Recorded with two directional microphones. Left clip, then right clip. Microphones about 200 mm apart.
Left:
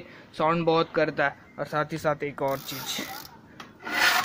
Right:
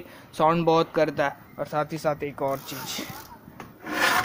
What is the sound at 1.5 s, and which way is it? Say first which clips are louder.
Speech: right 1 dB; centre (ahead or behind).